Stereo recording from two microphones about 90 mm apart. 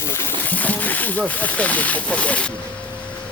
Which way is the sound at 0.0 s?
25° left (ahead or behind).